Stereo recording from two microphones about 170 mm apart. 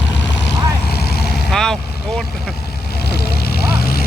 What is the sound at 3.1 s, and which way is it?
Vehicle, 65° left (ahead or behind).